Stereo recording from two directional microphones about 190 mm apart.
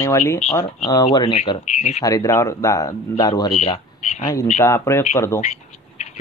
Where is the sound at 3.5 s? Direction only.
35° left (ahead or behind).